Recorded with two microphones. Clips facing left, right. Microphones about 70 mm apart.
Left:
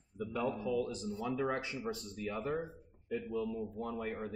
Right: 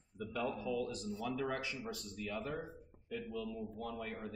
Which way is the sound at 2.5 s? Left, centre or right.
Centre.